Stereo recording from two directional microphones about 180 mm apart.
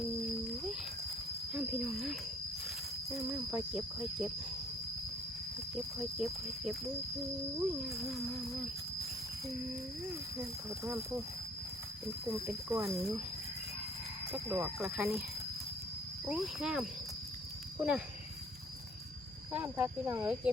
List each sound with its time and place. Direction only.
1.5 s cricket: 5° right (ahead or behind)
3.2 s speech: 5° right (ahead or behind)
5.7 s speech: centre (ahead or behind)
10.4 s speech: 15° right (ahead or behind)
12.3 s speech: 15° right (ahead or behind)
14.3 s speech: 10° right (ahead or behind)
16.3 s speech: 5° right (ahead or behind)
19.5 s speech: 10° right (ahead or behind)